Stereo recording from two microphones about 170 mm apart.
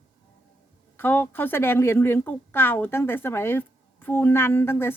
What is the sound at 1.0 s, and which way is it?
Speech, 10° left (ahead or behind).